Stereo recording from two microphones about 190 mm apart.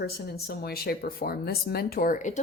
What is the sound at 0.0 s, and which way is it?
Speech, 55° left (ahead or behind).